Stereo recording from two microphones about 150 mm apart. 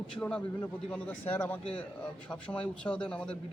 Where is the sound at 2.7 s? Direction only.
5° left (ahead or behind).